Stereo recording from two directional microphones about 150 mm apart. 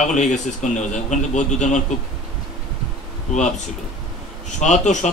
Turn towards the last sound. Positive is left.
turn(degrees=55)  # may be behind; listen again after turning